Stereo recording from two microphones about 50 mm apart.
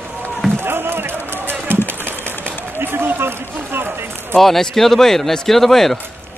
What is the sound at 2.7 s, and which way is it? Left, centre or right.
Speech, right.